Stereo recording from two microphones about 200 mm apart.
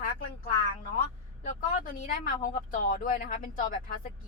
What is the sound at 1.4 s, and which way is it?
A woman's voice, 40° left (ahead or behind).